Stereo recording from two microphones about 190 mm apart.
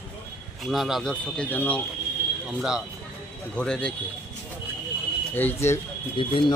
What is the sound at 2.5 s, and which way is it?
Speech, centre (ahead or behind).